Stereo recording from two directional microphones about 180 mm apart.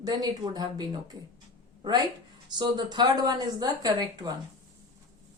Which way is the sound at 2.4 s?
25° right (ahead or behind).